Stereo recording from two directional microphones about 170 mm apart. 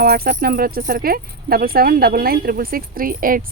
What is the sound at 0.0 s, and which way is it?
Speech, 65° right (ahead or behind).